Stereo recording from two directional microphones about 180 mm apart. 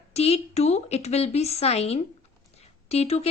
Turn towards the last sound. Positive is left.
turn(degrees=35)  # may be behind; listen again after turning